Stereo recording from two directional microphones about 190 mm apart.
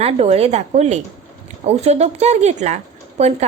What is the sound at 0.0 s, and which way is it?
Speech, 30° right (ahead or behind).